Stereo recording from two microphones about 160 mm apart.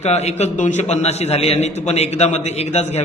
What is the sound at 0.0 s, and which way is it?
A man's voice, 45° left (ahead or behind).